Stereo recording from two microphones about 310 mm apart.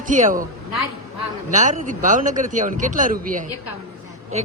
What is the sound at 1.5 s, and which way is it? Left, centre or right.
A man's voice, right.